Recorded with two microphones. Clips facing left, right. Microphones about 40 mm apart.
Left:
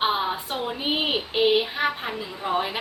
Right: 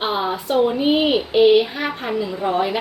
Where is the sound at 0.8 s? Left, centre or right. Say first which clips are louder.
Right 8 dB; centre.